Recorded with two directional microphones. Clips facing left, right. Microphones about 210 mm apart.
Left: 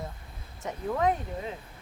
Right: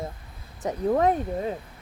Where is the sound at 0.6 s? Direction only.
40° right (ahead or behind).